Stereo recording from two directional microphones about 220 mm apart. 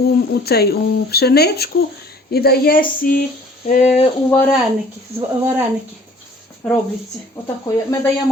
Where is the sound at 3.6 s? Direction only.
35° left (ahead or behind).